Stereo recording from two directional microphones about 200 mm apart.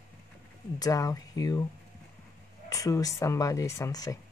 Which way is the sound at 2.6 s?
15° left (ahead or behind).